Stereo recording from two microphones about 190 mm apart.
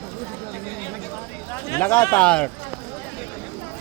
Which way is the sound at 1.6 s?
15° left (ahead or behind).